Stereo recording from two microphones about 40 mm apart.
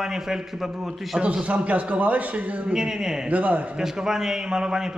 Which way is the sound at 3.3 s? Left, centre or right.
Right.